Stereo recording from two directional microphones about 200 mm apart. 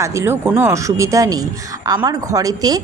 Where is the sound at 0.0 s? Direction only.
15° right (ahead or behind).